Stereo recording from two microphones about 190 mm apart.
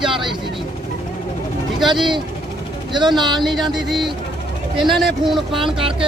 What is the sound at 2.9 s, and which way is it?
Speech, 25° right (ahead or behind).